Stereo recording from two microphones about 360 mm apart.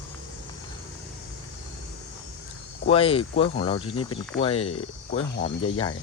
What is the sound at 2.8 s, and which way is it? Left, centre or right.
Speech, centre.